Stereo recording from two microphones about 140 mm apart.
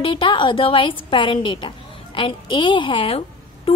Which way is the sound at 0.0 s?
40° left (ahead or behind).